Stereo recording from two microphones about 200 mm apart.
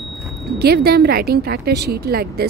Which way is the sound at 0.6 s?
50° right (ahead or behind).